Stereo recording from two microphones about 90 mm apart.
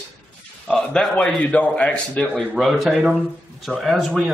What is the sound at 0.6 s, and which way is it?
Speech, 10° left (ahead or behind).